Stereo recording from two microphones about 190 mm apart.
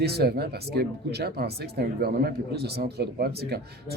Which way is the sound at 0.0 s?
55° right (ahead or behind).